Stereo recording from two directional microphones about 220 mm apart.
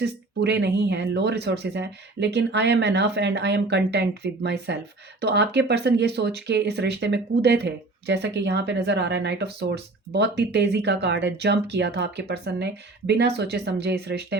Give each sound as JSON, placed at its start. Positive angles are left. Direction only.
{"t": 0.0, "sound": "speech", "side_deg": -50}